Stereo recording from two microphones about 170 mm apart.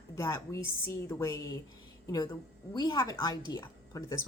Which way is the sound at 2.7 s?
25° left (ahead or behind).